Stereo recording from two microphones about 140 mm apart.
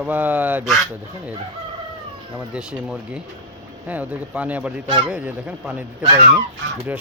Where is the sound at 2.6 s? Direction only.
5° right (ahead or behind).